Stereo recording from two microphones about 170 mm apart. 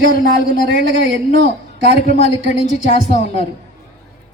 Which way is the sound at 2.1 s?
40° left (ahead or behind).